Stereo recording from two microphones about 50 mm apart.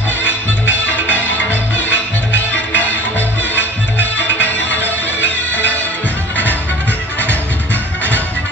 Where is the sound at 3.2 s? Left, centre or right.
Left.